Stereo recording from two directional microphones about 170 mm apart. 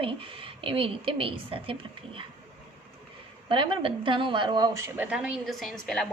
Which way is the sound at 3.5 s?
30° right (ahead or behind).